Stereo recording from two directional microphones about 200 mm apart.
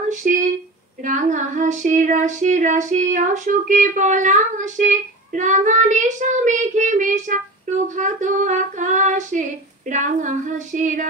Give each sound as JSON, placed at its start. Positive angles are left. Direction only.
{"t": 0.1, "sound": "speech", "side_deg": -40}
{"t": 1.0, "sound": "female singing", "side_deg": -40}